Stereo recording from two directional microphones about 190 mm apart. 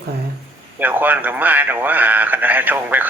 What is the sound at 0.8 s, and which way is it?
A man's voice, 10° right (ahead or behind).